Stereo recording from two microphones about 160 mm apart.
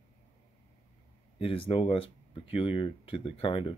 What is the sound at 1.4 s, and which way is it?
Speech, 35° left (ahead or behind).